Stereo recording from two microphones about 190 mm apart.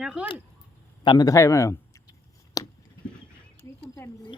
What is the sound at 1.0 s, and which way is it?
Speech, 20° left (ahead or behind).